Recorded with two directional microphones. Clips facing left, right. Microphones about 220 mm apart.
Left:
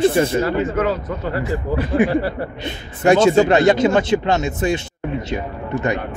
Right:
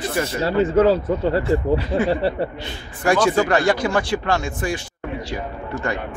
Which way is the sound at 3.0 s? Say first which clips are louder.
Left 5 dB; 25° left (ahead or behind).